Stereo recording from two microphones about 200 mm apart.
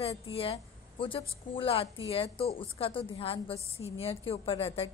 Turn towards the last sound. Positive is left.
turn(degrees=30)  # may be behind; listen again after turning